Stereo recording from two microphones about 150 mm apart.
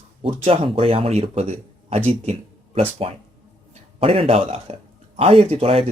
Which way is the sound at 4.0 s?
40° right (ahead or behind).